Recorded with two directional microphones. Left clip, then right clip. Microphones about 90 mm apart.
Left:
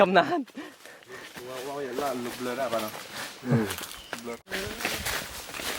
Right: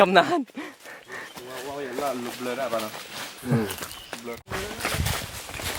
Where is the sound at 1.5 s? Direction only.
10° right (ahead or behind).